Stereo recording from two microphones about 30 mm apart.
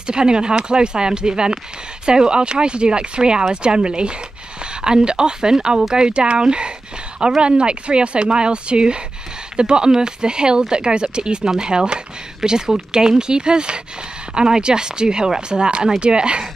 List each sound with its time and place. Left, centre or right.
0.0 s speech: right